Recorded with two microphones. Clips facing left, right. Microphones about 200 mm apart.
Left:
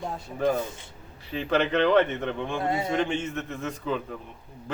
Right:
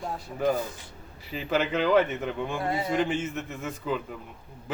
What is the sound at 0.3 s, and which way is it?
A man's voice, 5° right (ahead or behind).